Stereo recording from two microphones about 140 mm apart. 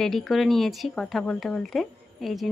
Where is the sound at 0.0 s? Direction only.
Centre (ahead or behind).